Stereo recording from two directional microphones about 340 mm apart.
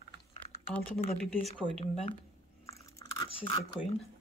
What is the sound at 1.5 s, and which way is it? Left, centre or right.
Speech, centre.